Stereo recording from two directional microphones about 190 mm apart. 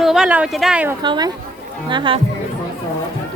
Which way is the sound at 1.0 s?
25° right (ahead or behind).